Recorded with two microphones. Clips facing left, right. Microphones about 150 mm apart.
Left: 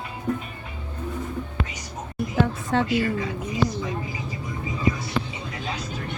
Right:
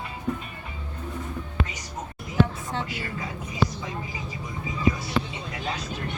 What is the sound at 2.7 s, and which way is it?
Speech, 90° left.